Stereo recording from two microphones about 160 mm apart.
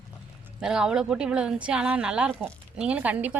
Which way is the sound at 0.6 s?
5° right (ahead or behind).